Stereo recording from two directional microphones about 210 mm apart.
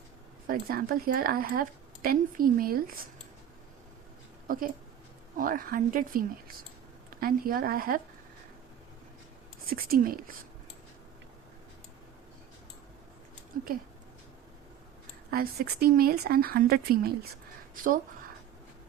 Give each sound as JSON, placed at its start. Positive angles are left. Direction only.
{"t": 0.4, "sound": "a woman's voice", "side_deg": -45}
{"t": 4.4, "sound": "a woman's voice", "side_deg": -40}
{"t": 9.6, "sound": "a woman's voice", "side_deg": -45}
{"t": 15.3, "sound": "a woman's voice", "side_deg": -45}